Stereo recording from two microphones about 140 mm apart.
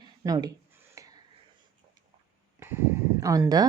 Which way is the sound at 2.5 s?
20° right (ahead or behind).